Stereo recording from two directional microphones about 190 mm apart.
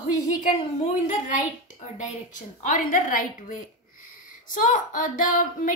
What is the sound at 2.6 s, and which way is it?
Speech, 45° left (ahead or behind).